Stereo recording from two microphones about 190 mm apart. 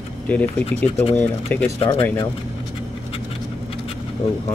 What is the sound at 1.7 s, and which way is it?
Speech, 30° left (ahead or behind).